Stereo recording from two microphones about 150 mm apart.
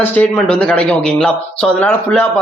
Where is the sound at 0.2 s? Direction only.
5° left (ahead or behind).